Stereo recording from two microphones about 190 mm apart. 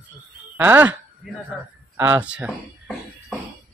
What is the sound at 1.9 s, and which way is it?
Speech, 10° right (ahead or behind).